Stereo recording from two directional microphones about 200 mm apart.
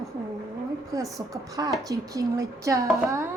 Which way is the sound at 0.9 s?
15° right (ahead or behind).